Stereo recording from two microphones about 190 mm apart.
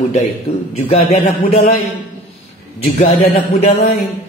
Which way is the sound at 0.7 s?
35° left (ahead or behind).